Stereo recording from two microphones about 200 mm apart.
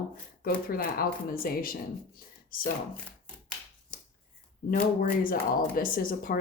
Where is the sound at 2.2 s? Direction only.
45° left (ahead or behind).